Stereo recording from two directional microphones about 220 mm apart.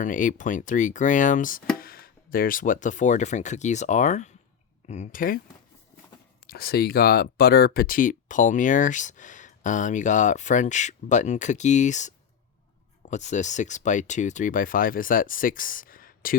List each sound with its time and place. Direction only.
0.0 s speech: 35° left (ahead or behind)
6.5 s speech: 45° left (ahead or behind)